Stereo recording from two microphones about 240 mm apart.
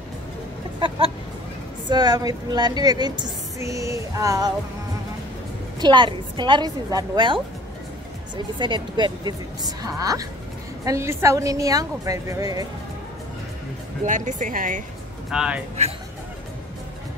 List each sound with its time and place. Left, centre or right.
0.7 s a sound: right
1.9 s a woman's voice: centre
5.8 s a woman's voice: centre
8.5 s a woman's voice: centre
14.0 s speech: right
15.3 s speech: centre